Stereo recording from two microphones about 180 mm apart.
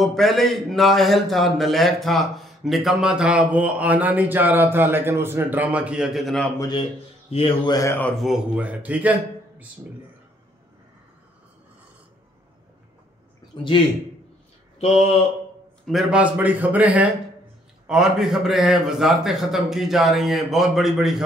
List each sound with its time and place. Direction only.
0.0 s a man's voice: centre (ahead or behind)
7.2 s speech: 30° left (ahead or behind); by 8.1 s 15° left (ahead or behind)
8.2 s speech: 5° right (ahead or behind)
14.8 s mantra: 35° left (ahead or behind)
15.8 s a man's voice: centre (ahead or behind)